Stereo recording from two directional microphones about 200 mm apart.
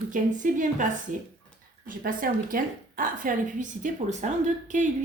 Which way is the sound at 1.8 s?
45° right (ahead or behind).